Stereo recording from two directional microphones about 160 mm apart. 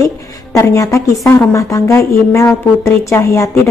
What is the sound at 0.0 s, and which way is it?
A woman's voice, 20° left (ahead or behind).